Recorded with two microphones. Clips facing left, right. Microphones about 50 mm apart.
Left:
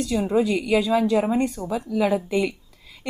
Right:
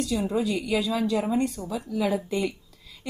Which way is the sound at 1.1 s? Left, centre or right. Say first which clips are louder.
Left 4 dB; left.